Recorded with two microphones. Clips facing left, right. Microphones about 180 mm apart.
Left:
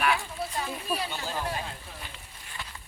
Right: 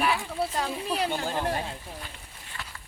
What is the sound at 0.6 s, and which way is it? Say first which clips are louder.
Speech: right 4 dB; 75° right (ahead or behind).